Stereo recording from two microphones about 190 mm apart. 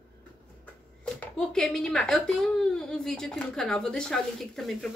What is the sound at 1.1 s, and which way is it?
Speech, centre (ahead or behind).